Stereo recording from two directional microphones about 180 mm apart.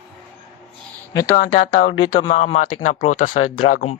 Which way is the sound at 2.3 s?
40° left (ahead or behind).